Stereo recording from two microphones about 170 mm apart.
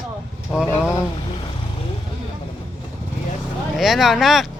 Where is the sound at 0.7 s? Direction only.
15° left (ahead or behind).